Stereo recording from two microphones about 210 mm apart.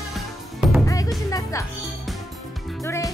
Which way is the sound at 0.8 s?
15° left (ahead or behind).